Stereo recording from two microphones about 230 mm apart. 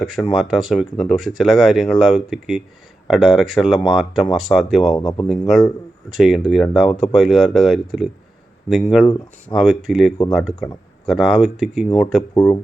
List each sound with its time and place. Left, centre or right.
0.0 s speech: centre
4.9 s speech: centre
5.2 s speech: centre
12.3 s speech: centre